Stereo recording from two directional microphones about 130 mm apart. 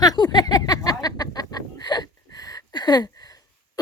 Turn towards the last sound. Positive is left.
turn(degrees=30)  # may be behind; listen again after turning